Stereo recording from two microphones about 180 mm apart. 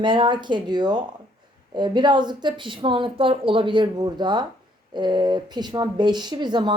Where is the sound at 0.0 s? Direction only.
25° right (ahead or behind).